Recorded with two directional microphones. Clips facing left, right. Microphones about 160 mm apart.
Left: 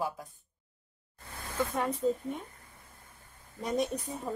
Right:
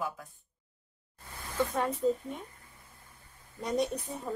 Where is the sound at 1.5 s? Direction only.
Centre (ahead or behind).